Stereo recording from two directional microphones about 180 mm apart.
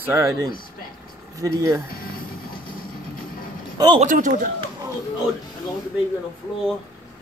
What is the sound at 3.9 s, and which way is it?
Speech, 45° right (ahead or behind).